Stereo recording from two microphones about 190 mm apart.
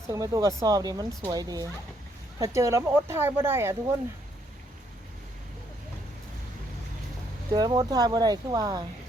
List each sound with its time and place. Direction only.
0.1 s speech: 20° right (ahead or behind)
7.5 s speech: 20° right (ahead or behind)